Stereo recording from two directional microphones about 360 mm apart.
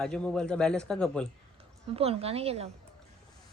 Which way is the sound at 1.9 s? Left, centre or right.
Centre.